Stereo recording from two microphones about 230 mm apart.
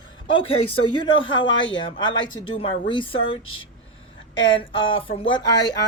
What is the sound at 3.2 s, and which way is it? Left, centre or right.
Speech, left.